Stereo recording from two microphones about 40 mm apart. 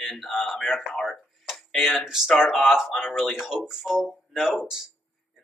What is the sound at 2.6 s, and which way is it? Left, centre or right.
Speech, centre.